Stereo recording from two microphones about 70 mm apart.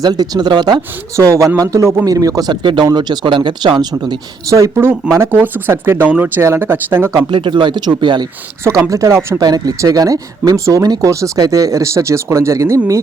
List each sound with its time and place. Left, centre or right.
0.0 s speech: right
1.1 s speech: right
2.0 s speech: right
4.4 s speech: right
5.1 s speech: right
7.3 s speech: right
8.6 s speech: right
9.4 s speech: right